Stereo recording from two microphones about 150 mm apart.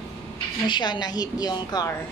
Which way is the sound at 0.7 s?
30° left (ahead or behind).